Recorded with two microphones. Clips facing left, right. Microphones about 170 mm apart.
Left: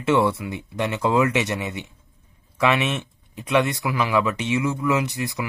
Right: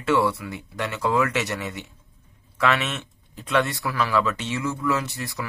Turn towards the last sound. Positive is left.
turn(degrees=15)  # may be behind; listen again after turning